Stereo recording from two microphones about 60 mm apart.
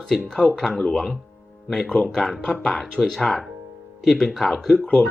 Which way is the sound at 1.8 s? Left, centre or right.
Centre.